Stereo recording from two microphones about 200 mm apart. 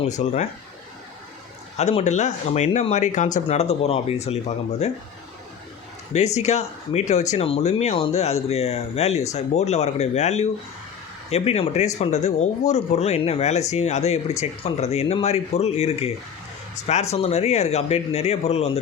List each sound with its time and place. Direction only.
0.2 s speech: 30° left (ahead or behind)
1.7 s speech: 30° left (ahead or behind)
6.1 s speech: 35° left (ahead or behind)